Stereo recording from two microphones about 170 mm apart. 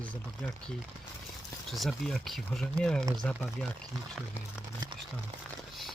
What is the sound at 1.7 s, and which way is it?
Speech, centre (ahead or behind).